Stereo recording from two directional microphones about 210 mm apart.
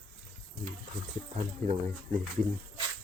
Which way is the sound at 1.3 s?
30° right (ahead or behind).